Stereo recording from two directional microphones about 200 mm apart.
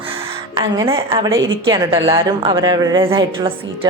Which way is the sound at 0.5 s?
20° right (ahead or behind).